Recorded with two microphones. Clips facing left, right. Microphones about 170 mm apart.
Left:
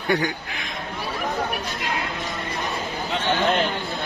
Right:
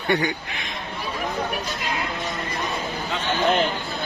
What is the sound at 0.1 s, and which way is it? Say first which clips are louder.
Speech: even; centre (ahead or behind).